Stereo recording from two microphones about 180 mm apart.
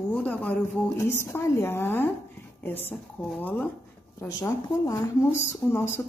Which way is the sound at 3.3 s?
10° left (ahead or behind).